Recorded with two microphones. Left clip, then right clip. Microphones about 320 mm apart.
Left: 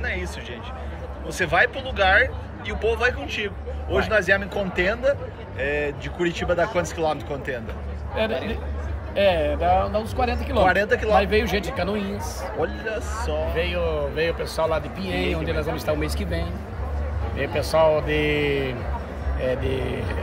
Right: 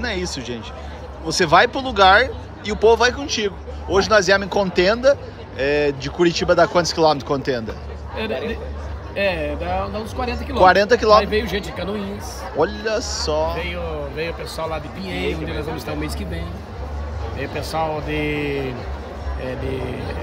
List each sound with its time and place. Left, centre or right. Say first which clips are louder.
0.0 s speech: right 4 dB; centre
9.1 s speech: left 2 dB; centre
10.6 s speech: right 7 dB; centre
11.1 s speech: right 3 dB; centre
12.5 s speech: right 8 dB; centre
13.6 s speech: left 2 dB; centre